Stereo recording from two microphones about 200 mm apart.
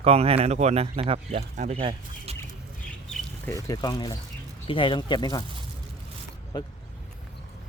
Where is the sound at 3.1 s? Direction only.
5° left (ahead or behind).